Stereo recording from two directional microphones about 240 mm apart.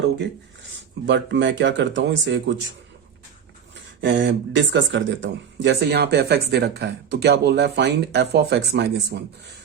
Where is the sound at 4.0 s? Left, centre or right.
Right.